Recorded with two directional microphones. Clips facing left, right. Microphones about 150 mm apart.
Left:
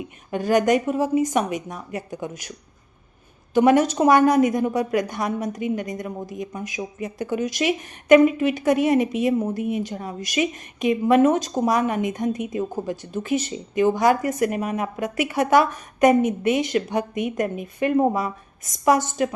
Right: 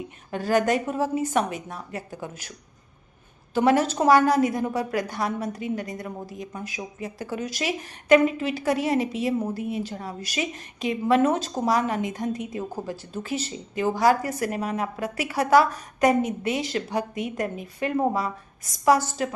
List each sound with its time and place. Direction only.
0.3 s speech: 15° left (ahead or behind)
3.5 s a woman's voice: 15° left (ahead or behind)